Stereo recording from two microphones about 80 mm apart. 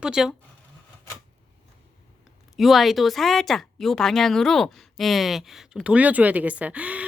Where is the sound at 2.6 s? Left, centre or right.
Centre.